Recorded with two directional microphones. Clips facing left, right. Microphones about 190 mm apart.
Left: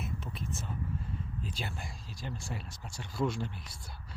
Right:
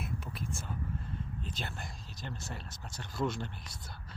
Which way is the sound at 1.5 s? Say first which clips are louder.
Left 3 dB; 5° left (ahead or behind).